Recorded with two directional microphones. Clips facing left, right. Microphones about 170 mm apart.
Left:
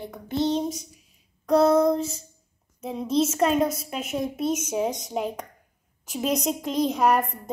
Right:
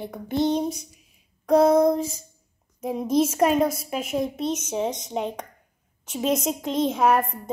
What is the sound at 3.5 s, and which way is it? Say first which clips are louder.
Speech: right 1 dB; centre (ahead or behind).